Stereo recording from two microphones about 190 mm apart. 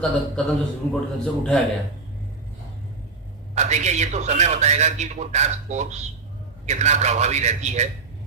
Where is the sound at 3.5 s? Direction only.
35° right (ahead or behind).